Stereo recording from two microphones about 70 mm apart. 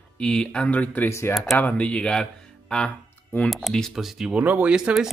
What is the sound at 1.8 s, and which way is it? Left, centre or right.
Speech, centre.